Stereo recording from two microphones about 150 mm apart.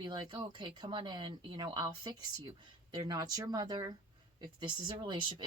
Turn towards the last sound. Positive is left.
turn(degrees=-30)  # may be behind; listen again after turning